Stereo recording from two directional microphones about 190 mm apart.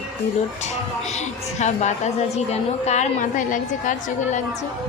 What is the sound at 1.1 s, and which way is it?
A woman's voice, 40° left (ahead or behind).